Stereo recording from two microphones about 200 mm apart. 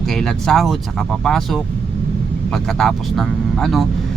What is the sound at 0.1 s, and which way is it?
Speech, 5° left (ahead or behind).